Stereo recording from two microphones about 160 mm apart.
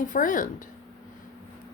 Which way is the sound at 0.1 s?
55° left (ahead or behind).